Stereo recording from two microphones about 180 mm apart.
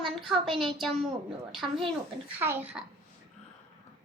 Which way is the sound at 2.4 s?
10° right (ahead or behind).